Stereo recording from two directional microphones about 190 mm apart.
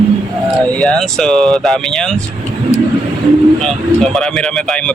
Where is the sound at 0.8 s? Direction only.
5° left (ahead or behind).